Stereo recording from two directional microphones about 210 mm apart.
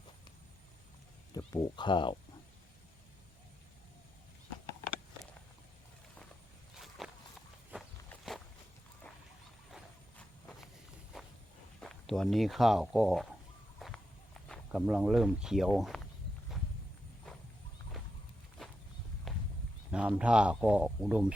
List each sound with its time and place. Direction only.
1.3 s speech: 20° left (ahead or behind)
6.7 s walk: centre (ahead or behind)
8.1 s walk: centre (ahead or behind)
9.7 s a sound: centre (ahead or behind)
11.1 s walk: centre (ahead or behind)
11.8 s speech: centre (ahead or behind)
13.7 s horse: centre (ahead or behind)
14.4 s speech: centre (ahead or behind)
18.6 s a sound: centre (ahead or behind)
19.3 s horse: centre (ahead or behind)
19.9 s speech: 5° right (ahead or behind)